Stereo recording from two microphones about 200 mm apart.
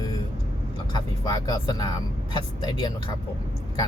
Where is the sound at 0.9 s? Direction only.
20° left (ahead or behind).